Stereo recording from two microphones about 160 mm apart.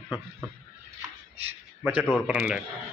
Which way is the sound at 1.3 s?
40° right (ahead or behind).